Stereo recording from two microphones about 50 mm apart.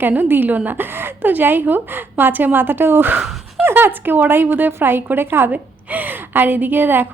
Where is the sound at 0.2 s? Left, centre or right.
Right.